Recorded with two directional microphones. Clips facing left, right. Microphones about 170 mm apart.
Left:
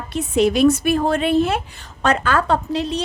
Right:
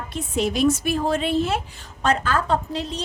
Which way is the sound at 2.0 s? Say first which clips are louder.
Left 3 dB; 70° left (ahead or behind).